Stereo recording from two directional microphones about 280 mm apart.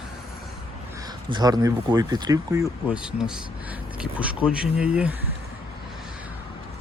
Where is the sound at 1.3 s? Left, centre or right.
Centre.